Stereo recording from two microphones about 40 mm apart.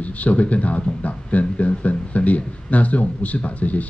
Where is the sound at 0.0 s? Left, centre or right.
Left.